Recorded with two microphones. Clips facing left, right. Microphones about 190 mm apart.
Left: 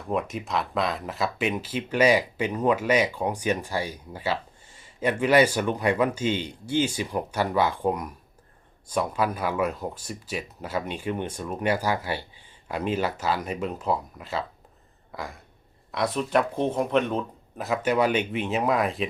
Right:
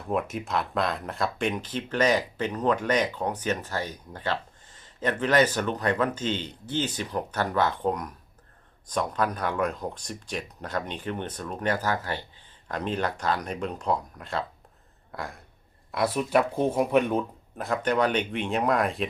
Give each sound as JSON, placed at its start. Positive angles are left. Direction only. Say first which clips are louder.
{"t": 0.1, "sound": "speech", "louder": "even", "side_deg": 0}
{"t": 15.1, "sound": "a sound", "louder": "even", "side_deg": 0}
{"t": 15.9, "sound": "speech", "louder": "even", "side_deg": -5}
{"t": 17.6, "sound": "speech", "louder": "left 1 dB", "side_deg": 5}